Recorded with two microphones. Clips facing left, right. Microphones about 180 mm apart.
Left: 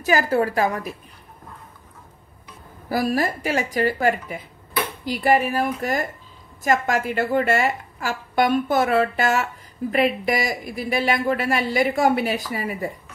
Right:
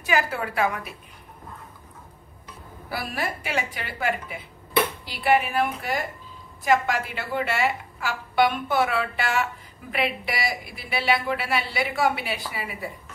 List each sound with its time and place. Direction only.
0.0 s a woman's voice: 40° left (ahead or behind)
2.9 s a woman's voice: 40° left (ahead or behind)